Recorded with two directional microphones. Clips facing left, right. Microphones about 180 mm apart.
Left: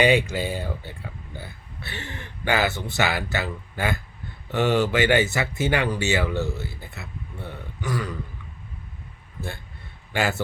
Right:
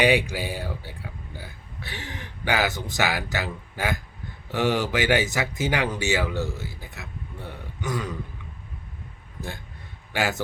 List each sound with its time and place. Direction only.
0.0 s speech: 15° right (ahead or behind)
6.3 s speech: 15° left (ahead or behind)
6.6 s speech: 15° right (ahead or behind)
10.1 s a man's voice: 15° right (ahead or behind)